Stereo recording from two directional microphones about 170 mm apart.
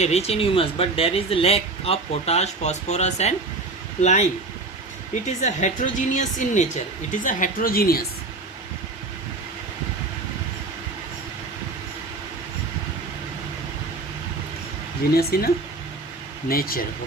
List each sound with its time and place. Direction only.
0.0 s a woman's voice: 40° left (ahead or behind); by 8.0 s 60° left (ahead or behind)
15.1 s a woman's voice: 65° left (ahead or behind)
16.5 s a woman's voice: 60° left (ahead or behind)